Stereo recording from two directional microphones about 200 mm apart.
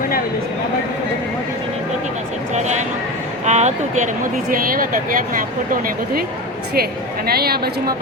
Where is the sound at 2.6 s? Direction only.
35° right (ahead or behind).